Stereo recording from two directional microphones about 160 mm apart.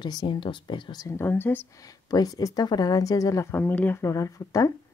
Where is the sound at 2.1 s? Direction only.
25° left (ahead or behind).